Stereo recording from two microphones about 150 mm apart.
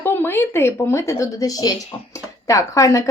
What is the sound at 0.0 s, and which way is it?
Speech, 15° left (ahead or behind).